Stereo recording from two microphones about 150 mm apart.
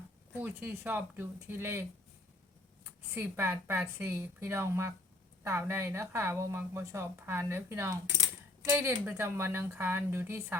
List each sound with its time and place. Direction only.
0.3 s speech: 15° right (ahead or behind)
2.8 s speech: 15° right (ahead or behind)